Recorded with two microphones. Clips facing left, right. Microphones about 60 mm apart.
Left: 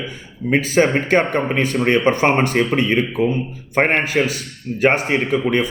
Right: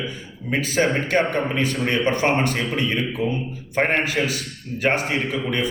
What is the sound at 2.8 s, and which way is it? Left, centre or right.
Speech, left.